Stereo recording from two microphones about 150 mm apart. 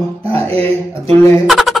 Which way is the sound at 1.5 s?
Centre (ahead or behind).